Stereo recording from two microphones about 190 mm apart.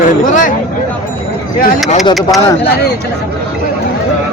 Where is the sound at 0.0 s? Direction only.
45° left (ahead or behind).